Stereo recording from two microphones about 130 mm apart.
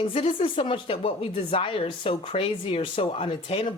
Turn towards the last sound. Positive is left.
turn(degrees=45)  # may be behind; listen again after turning